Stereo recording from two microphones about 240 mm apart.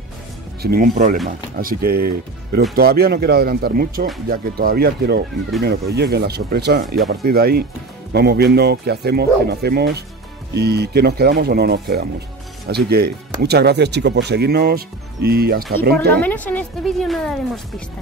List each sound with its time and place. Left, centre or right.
0.6 s speech: right
16.2 s speech: centre